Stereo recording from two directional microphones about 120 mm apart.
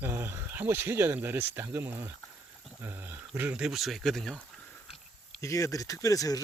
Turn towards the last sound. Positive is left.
turn(degrees=30)  # may be behind; listen again after turning